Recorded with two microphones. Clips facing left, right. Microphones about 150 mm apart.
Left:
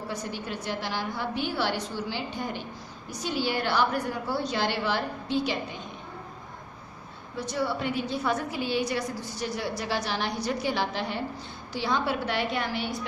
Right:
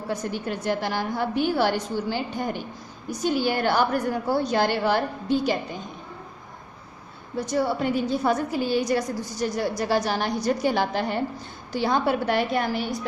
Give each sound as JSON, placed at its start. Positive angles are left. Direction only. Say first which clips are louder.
{"t": 0.1, "sound": "a woman's voice", "louder": "right 8 dB", "side_deg": -50}
{"t": 7.3, "sound": "a woman's voice", "louder": "right 5 dB", "side_deg": -45}